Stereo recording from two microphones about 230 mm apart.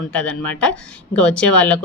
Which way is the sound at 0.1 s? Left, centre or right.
Centre.